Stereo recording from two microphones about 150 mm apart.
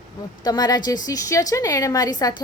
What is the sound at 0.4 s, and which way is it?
A woman's voice, 25° left (ahead or behind).